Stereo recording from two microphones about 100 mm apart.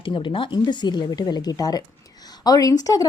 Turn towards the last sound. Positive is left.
turn(degrees=35)  # may be behind; listen again after turning